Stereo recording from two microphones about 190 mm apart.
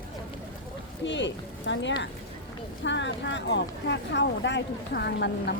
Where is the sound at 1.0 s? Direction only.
70° left (ahead or behind).